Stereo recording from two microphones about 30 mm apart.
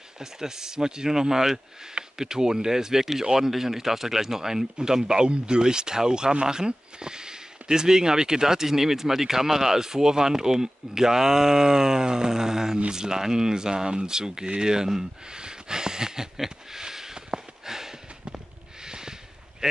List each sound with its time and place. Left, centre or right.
0.2 s speech: centre
16.4 s a sound: centre
19.6 s speech: right